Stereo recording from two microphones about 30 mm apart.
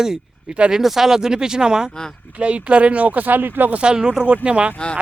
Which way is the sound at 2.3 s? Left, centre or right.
Right.